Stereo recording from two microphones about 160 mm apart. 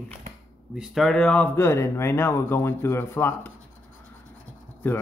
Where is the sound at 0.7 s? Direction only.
Centre (ahead or behind); by 3.5 s 15° left (ahead or behind).